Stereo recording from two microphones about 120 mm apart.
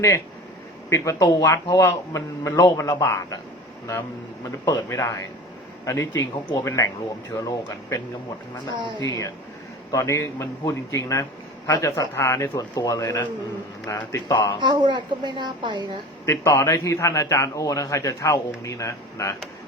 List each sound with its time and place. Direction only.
0.9 s a man's voice: 25° left (ahead or behind)
4.6 s a man's voice: 30° left (ahead or behind)
9.0 s a man's voice: 30° left (ahead or behind)
14.6 s a woman's voice: 40° right (ahead or behind)
16.2 s a man's voice: 25° left (ahead or behind)